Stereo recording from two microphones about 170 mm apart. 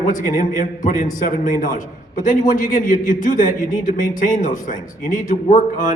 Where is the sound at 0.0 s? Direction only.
50° left (ahead or behind).